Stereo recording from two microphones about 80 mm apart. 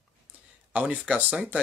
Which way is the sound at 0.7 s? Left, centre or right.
Centre.